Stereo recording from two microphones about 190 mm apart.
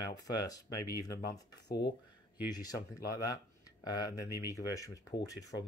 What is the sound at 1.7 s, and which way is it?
Speech, 55° left (ahead or behind).